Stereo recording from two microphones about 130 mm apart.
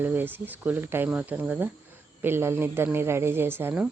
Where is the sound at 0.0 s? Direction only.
15° right (ahead or behind).